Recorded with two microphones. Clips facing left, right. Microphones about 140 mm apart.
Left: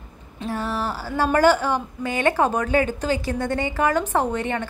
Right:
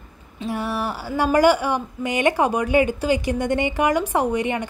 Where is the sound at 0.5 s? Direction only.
10° right (ahead or behind).